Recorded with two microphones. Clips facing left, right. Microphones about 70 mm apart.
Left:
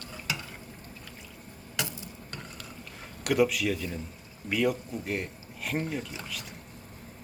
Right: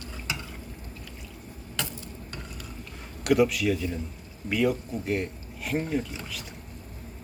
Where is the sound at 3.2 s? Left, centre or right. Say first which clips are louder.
Right 3 dB; centre.